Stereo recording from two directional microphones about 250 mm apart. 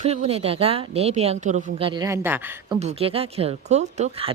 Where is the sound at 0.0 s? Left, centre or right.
Right; by 2.7 s centre.